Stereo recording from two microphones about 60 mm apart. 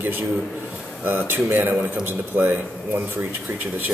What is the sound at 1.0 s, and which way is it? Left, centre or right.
A man's voice, right.